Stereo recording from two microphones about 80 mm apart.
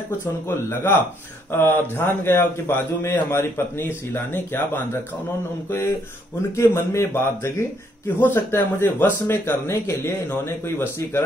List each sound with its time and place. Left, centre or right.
0.2 s a man's voice: left
6.5 s a man's voice: left